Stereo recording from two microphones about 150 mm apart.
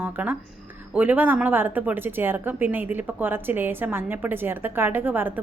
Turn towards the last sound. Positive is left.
turn(degrees=-15)  # may be behind; listen again after turning